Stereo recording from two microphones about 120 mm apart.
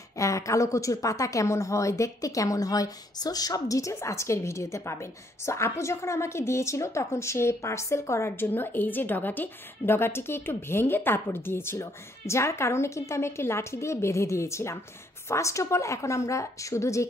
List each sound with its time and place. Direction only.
0.2 s a woman's voice: 25° left (ahead or behind)